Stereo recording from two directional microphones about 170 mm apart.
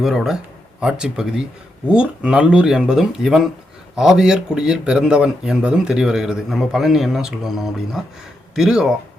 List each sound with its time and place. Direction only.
0.0 s speech: centre (ahead or behind)